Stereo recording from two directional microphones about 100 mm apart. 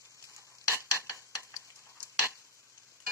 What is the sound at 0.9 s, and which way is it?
Stir, 30° left (ahead or behind).